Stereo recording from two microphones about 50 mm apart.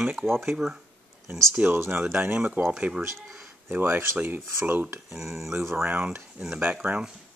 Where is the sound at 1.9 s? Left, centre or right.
Right.